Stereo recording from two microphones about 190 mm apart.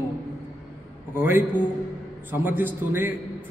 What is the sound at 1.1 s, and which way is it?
A man's voice, 10° right (ahead or behind).